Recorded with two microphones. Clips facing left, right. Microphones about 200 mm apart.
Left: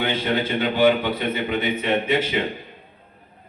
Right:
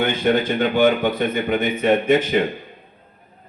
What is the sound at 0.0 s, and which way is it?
A man's voice, 45° right (ahead or behind).